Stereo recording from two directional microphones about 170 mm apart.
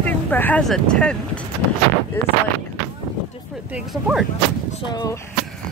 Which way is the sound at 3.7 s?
5° right (ahead or behind).